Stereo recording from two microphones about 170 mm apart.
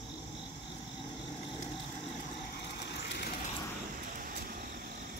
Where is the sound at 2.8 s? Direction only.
75° left (ahead or behind).